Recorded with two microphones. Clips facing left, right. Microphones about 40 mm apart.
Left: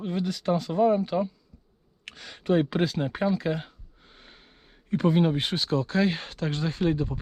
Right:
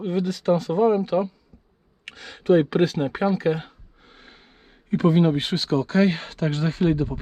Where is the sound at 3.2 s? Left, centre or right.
Centre.